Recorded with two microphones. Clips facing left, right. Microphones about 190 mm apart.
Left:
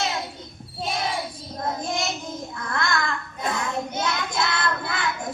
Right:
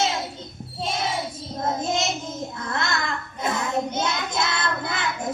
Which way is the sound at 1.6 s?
25° right (ahead or behind).